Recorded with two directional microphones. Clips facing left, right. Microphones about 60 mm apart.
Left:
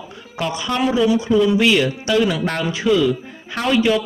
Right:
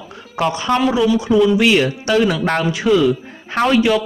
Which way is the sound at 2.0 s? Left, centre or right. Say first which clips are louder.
Right 2 dB; right.